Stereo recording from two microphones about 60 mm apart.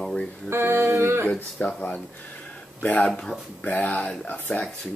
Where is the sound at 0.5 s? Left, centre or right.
Right.